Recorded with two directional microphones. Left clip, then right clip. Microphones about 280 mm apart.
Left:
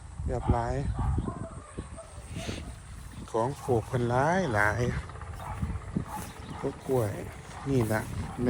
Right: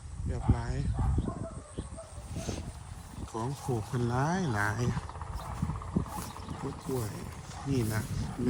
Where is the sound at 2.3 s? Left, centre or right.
Right.